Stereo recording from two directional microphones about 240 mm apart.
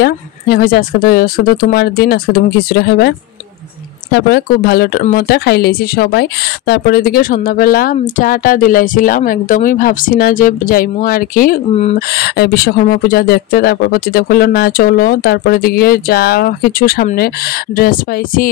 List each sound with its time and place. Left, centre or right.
0.0 s speech: left
12.1 s speech: left